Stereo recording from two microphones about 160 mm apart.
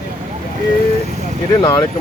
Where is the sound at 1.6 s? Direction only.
25° left (ahead or behind).